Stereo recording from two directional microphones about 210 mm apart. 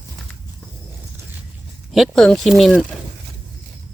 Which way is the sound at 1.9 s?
Centre (ahead or behind).